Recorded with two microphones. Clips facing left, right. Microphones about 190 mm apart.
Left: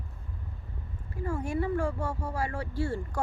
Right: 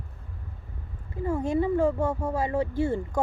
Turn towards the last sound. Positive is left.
turn(degrees=-20)  # may be behind; listen again after turning